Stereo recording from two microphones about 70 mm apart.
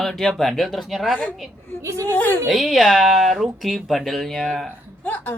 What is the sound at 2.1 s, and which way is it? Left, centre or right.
Speech, left.